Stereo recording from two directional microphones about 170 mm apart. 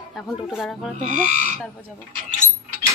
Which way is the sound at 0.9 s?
45° right (ahead or behind).